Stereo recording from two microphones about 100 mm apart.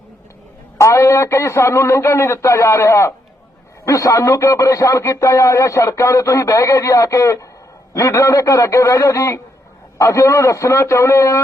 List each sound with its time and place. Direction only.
0.8 s speech: 30° left (ahead or behind)